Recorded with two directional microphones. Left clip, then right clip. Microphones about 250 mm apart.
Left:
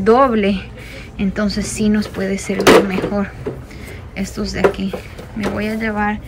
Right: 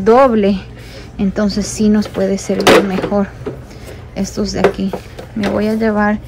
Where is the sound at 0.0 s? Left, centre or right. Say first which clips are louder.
Right 3 dB; centre.